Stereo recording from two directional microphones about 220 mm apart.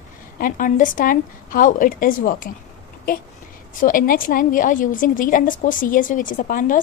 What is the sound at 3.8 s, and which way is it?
A woman's voice, 40° left (ahead or behind).